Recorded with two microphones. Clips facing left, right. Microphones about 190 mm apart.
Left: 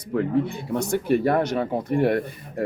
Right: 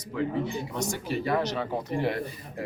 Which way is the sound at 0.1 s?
55° left (ahead or behind).